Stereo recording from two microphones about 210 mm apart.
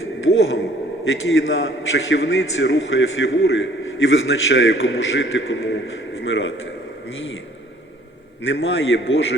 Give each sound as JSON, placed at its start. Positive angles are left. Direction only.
{"t": 0.0, "sound": "a sound", "side_deg": 70}
{"t": 1.0, "sound": "a man's voice", "side_deg": 70}
{"t": 8.4, "sound": "a man's voice", "side_deg": 65}